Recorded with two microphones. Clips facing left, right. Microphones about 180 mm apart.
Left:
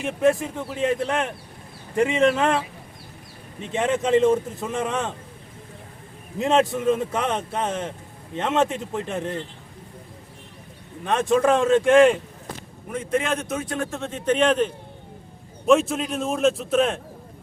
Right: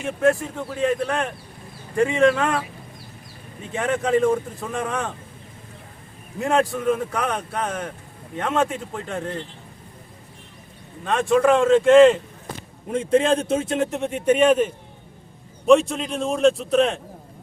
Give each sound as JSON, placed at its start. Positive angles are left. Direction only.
{"t": 0.0, "sound": "a man's voice", "side_deg": 15}
{"t": 6.4, "sound": "a man's voice", "side_deg": 20}
{"t": 11.0, "sound": "a man's voice", "side_deg": 20}
{"t": 12.9, "sound": "a man's voice", "side_deg": -30}
{"t": 15.6, "sound": "a man's voice", "side_deg": 0}